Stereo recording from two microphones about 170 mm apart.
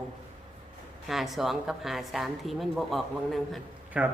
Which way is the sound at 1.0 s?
Centre (ahead or behind).